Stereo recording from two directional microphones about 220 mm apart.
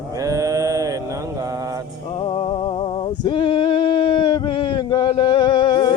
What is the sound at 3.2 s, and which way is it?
Male singing, 20° left (ahead or behind).